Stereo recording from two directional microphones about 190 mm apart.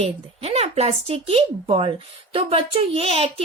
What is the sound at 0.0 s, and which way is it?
A child's voice, 35° right (ahead or behind).